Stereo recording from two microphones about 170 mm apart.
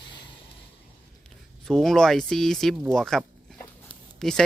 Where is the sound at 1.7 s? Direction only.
Centre (ahead or behind).